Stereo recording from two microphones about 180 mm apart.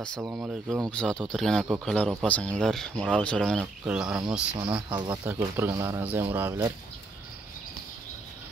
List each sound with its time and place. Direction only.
0.2 s speech: 10° right (ahead or behind)
1.0 s speech: 5° left (ahead or behind)
4.7 s speech: 25° right (ahead or behind)
5.3 s speech: 15° right (ahead or behind)